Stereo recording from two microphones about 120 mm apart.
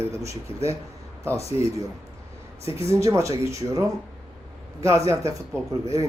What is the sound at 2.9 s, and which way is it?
A man's voice, 25° right (ahead or behind).